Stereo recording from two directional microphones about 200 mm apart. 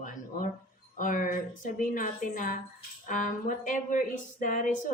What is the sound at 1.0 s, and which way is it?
A woman's voice, 40° left (ahead or behind).